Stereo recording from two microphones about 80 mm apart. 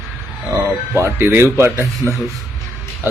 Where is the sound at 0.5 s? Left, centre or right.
Right.